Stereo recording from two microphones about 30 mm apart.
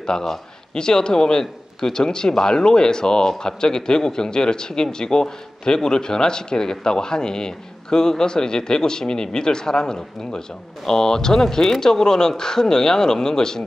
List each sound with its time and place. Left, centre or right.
0.7 s speech: left